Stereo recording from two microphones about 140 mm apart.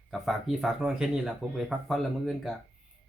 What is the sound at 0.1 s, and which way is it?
Speech, centre (ahead or behind).